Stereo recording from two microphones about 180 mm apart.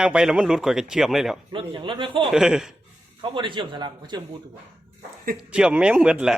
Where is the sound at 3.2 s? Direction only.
30° right (ahead or behind).